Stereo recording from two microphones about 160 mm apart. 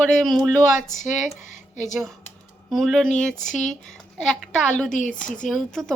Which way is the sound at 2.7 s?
Centre (ahead or behind).